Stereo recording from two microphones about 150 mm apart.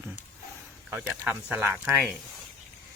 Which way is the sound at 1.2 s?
15° right (ahead or behind).